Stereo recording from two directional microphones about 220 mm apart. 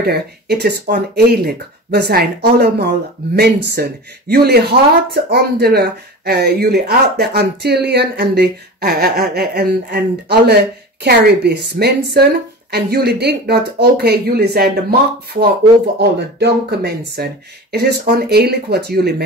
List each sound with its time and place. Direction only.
0.0 s speech: 45° right (ahead or behind)
16.0 s speech: 50° right (ahead or behind)